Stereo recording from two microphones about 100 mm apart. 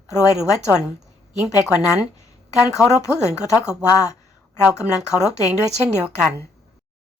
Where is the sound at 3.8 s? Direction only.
35° left (ahead or behind).